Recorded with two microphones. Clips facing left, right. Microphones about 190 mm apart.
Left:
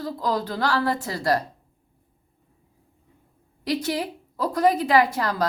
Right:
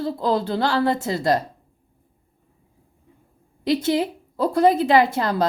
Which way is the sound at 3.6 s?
25° right (ahead or behind).